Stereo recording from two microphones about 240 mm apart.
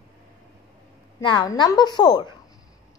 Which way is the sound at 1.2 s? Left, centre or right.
Centre.